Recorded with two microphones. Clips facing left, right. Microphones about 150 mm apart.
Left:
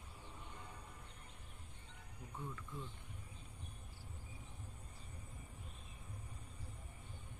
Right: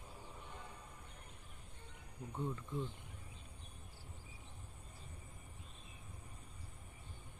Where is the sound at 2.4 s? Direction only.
20° right (ahead or behind).